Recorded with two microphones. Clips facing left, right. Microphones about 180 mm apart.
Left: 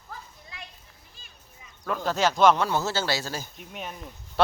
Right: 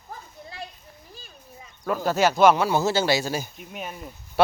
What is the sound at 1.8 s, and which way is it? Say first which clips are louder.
Speech: right 3 dB; 5° right (ahead or behind).